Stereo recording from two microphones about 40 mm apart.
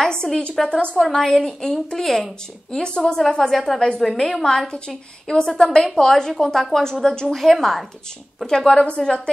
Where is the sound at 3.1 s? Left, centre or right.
Centre.